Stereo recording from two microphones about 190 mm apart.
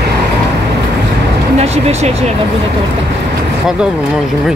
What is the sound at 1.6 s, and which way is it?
Speech, 35° right (ahead or behind).